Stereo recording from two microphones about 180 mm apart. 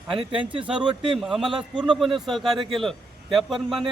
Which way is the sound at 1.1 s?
5° right (ahead or behind).